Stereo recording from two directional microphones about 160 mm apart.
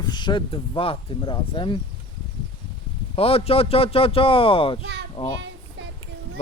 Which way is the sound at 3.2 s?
40° left (ahead or behind).